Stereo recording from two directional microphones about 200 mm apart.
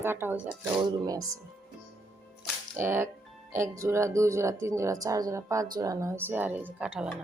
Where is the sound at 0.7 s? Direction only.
20° right (ahead or behind).